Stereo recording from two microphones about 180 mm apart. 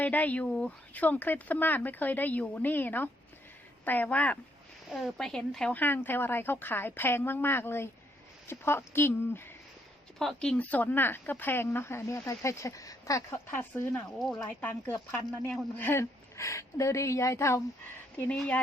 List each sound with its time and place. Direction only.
0.0 s speech: 10° left (ahead or behind)
14.4 s speech: 10° left (ahead or behind)